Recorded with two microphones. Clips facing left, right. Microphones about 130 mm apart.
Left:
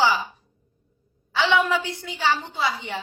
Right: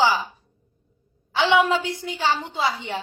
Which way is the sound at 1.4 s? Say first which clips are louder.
Right 2 dB; 20° right (ahead or behind).